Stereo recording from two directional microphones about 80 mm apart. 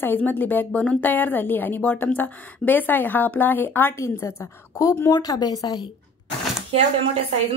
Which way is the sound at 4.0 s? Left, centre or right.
Left.